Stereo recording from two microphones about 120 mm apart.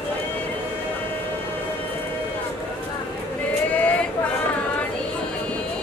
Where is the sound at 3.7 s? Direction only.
10° left (ahead or behind).